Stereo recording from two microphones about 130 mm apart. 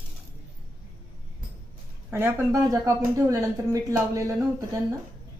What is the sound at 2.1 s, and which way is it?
A woman's voice, 20° right (ahead or behind).